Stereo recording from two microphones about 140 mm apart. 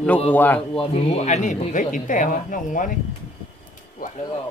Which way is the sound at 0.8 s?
45° left (ahead or behind).